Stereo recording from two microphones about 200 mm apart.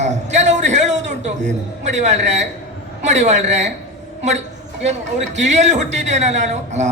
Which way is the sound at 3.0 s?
35° right (ahead or behind).